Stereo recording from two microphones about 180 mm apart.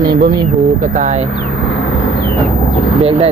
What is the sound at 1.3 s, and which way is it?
Vehicle, 90° left.